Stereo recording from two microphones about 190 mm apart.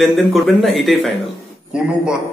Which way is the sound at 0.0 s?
Centre (ahead or behind).